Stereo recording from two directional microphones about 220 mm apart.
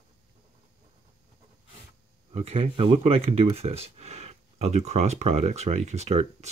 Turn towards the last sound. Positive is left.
turn(degrees=-30)  # may be behind; listen again after turning